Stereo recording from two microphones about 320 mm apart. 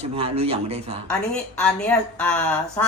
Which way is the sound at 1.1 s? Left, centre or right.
Centre.